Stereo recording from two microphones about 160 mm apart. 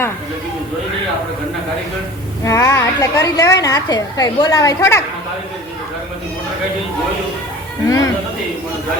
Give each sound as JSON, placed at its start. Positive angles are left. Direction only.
{"t": 2.4, "sound": "a woman's voice", "side_deg": 20}
{"t": 7.9, "sound": "a woman's voice", "side_deg": 20}